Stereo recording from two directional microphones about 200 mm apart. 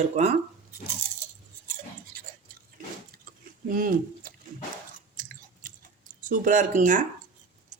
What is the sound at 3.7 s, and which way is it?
Speech, 45° right (ahead or behind).